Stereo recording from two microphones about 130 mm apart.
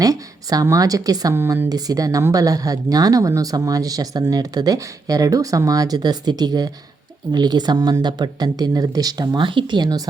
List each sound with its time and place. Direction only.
0.0 s speech: 25° right (ahead or behind)